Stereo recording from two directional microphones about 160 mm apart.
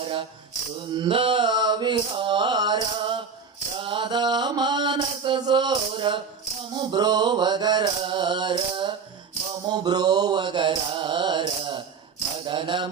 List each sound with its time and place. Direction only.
0.0 s music: 35° right (ahead or behind)
0.9 s mantra: 30° right (ahead or behind)
12.5 s music: 30° right (ahead or behind)